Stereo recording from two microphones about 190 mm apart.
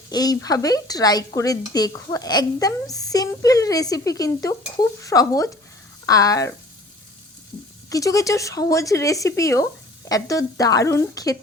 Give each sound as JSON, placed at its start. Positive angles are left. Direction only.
{"t": 0.1, "sound": "a woman's voice", "side_deg": 20}
{"t": 7.9, "sound": "speech", "side_deg": 20}